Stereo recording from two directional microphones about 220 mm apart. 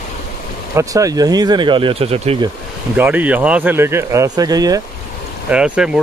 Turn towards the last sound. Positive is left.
turn(degrees=-5)  # may be behind; listen again after turning